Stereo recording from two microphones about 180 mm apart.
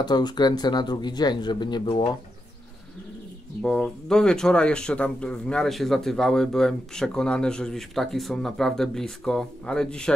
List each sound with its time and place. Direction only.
0.0 s speech: 25° left (ahead or behind)
3.6 s speech: 5° left (ahead or behind)